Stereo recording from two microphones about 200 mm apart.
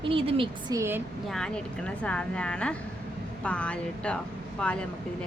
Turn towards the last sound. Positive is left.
turn(degrees=5)  # may be behind; listen again after turning